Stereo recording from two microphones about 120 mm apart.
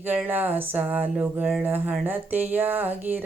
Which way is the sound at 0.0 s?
15° right (ahead or behind).